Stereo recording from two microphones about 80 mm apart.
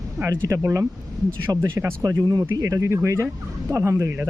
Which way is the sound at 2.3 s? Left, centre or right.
Right.